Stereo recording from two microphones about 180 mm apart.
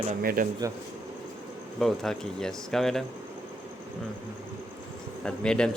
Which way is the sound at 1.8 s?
Centre (ahead or behind).